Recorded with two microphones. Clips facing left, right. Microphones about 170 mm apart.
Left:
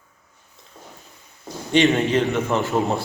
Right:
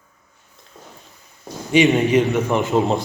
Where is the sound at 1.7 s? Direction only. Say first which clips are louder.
Right 3 dB; 10° right (ahead or behind).